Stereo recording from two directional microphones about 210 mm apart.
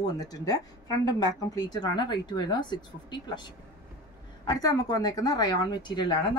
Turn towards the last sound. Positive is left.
turn(degrees=20)  # may be behind; listen again after turning